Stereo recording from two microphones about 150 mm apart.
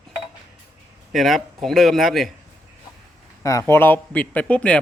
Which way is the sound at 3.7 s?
15° left (ahead or behind).